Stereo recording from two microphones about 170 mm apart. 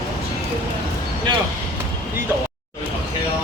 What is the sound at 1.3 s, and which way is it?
Vehicle, 25° right (ahead or behind).